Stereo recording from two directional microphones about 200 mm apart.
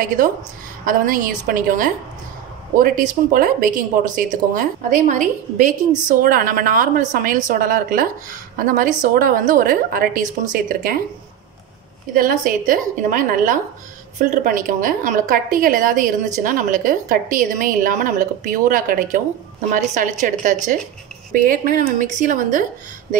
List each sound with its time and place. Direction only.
0.8 s speech: 45° right (ahead or behind)
12.1 s a woman's voice: 45° right (ahead or behind)